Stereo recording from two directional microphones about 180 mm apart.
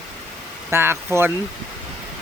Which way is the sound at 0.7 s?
15° right (ahead or behind).